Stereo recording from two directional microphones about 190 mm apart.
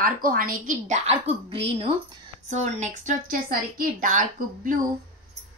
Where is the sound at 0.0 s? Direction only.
50° right (ahead or behind).